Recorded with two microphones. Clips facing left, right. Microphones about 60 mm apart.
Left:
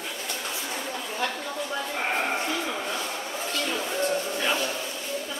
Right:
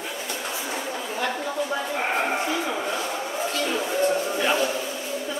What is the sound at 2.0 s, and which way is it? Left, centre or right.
Livestock, centre.